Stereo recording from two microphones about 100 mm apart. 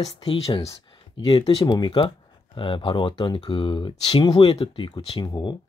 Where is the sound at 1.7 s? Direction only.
50° left (ahead or behind).